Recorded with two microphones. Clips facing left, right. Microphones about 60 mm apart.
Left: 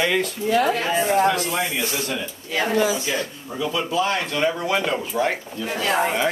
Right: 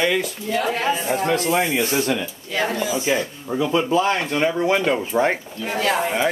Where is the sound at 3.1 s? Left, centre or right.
Right.